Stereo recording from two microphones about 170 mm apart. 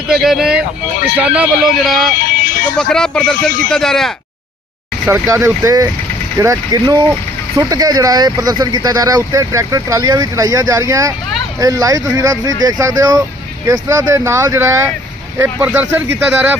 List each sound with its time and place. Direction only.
0.1 s speech: centre (ahead or behind)
2.4 s a sound: 50° left (ahead or behind)
2.7 s speech: 5° left (ahead or behind)
5.0 s speech: 15° right (ahead or behind)